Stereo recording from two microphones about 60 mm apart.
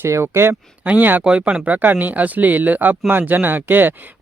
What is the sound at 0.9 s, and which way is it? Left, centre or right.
Speech, right.